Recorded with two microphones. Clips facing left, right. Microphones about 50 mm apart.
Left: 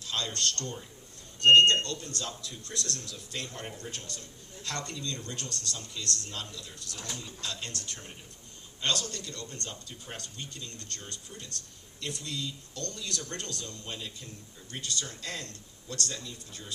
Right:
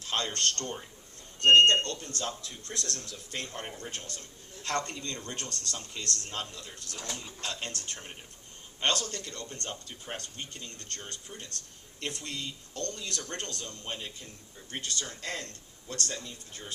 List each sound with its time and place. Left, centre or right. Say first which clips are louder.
0.0 s speech: right 2 dB; right